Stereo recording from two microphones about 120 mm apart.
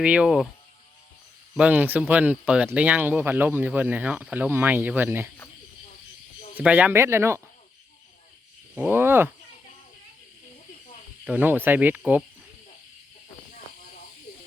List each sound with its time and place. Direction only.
0.0 s speech: 10° right (ahead or behind)
1.5 s speech: 10° right (ahead or behind)
6.6 s speech: 10° right (ahead or behind)
8.8 s speech: 20° right (ahead or behind)
11.3 s speech: 15° right (ahead or behind)